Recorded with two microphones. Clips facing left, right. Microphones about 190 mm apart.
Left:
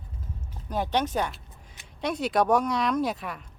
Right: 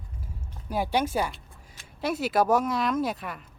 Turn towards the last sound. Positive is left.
turn(degrees=0)  # may be behind; listen again after turning